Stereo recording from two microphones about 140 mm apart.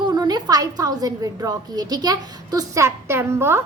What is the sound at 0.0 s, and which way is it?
A woman's voice, 30° right (ahead or behind).